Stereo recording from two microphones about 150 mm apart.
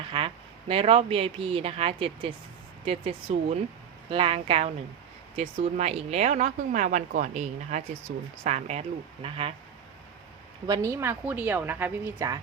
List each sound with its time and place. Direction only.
0.7 s speech: 40° right (ahead or behind)
10.7 s a woman's voice: 20° right (ahead or behind)